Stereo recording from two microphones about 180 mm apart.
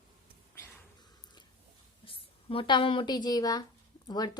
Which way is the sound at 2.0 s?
30° left (ahead or behind).